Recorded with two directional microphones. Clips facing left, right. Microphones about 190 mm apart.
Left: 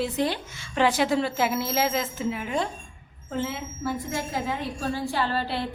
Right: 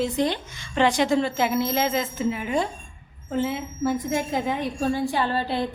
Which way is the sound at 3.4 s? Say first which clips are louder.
Right 5 dB; 15° right (ahead or behind).